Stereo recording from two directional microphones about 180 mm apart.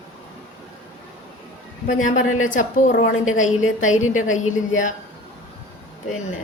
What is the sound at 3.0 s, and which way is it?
Speech, 90° left.